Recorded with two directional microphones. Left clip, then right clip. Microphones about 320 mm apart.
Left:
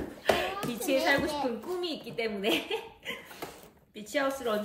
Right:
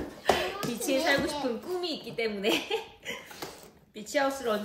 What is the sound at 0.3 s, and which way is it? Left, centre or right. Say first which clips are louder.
A child's voice: right 1 dB; centre.